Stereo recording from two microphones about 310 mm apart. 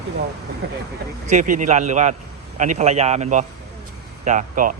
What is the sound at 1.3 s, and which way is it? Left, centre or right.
Speech, right.